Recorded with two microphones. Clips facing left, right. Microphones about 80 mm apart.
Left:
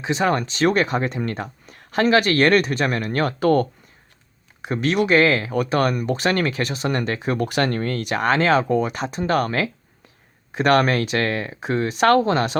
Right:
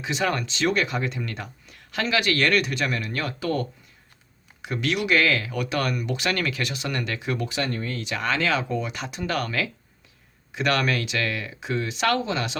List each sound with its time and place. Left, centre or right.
0.0 s speech: left
4.6 s speech: left
7.4 s speech: left